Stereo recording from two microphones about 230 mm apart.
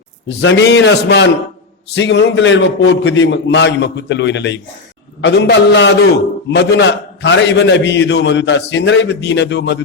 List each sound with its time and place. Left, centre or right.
0.3 s a man's voice: left